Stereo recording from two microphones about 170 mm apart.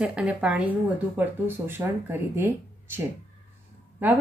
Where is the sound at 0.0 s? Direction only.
5° right (ahead or behind).